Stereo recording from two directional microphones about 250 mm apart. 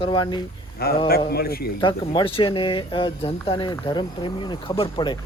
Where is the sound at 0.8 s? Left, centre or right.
Left.